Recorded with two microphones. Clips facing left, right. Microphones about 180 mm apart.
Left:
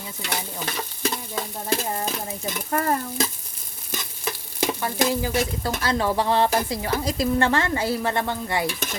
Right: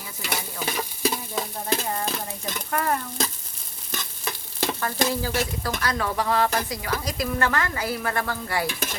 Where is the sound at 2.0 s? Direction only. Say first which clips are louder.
Left 1 dB; centre (ahead or behind).